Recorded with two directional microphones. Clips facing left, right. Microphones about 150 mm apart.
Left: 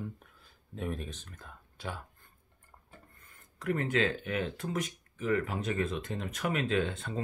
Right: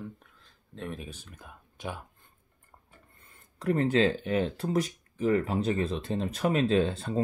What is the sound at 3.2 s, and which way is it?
Speech, 30° right (ahead or behind).